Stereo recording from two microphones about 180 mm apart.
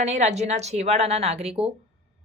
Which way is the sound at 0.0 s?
40° right (ahead or behind).